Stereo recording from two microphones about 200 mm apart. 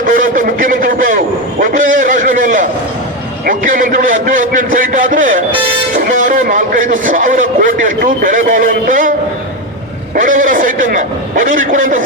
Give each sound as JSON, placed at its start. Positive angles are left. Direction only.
{"t": 0.0, "sound": "a sound", "side_deg": -40}
{"t": 3.4, "sound": "a man's voice", "side_deg": -40}
{"t": 10.2, "sound": "a man's voice", "side_deg": -40}